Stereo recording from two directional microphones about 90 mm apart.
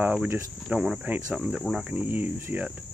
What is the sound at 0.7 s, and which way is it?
Speech, 10° right (ahead or behind).